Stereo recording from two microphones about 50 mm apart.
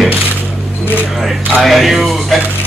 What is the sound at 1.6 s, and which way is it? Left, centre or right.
Speech, centre.